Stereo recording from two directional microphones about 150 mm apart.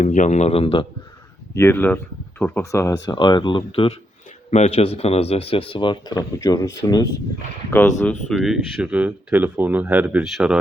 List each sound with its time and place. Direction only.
0.0 s a man's voice: 55° left (ahead or behind); by 0.9 s 40° left (ahead or behind)
1.5 s speech: 15° left (ahead or behind)
8.4 s speech: 5° right (ahead or behind)